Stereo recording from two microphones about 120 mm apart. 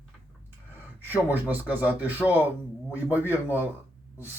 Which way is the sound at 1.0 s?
15° right (ahead or behind).